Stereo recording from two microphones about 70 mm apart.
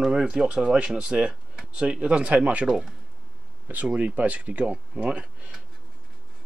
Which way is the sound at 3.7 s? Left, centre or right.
Right.